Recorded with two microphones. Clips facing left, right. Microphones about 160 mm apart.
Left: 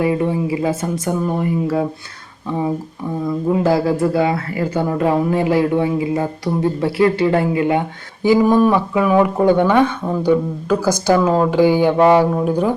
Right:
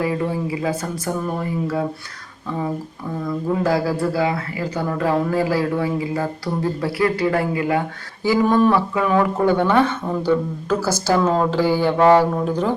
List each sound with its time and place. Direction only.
0.0 s speech: 25° left (ahead or behind)
3.2 s a man's voice: 25° left (ahead or behind)